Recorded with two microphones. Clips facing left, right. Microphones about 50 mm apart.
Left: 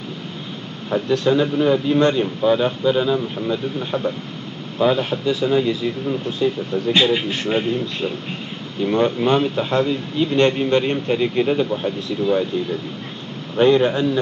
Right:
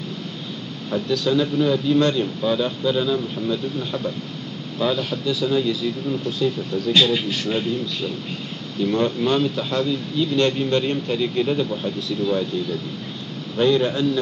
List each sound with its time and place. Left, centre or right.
0.8 s speech: left